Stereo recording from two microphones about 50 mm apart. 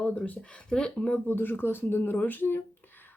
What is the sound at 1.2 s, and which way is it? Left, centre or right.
Speech, left.